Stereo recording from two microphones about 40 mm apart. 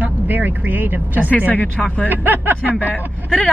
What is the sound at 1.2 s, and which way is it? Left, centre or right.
Speech, left.